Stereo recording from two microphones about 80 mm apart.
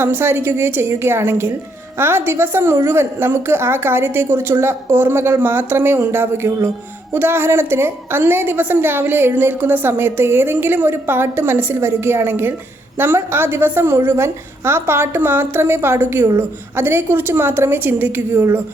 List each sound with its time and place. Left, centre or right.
0.0 s a woman's voice: right